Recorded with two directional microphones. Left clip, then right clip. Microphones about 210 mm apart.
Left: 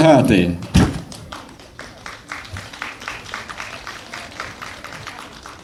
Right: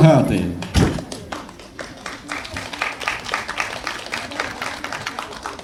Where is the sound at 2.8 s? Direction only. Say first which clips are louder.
Right 6 dB; 55° right (ahead or behind).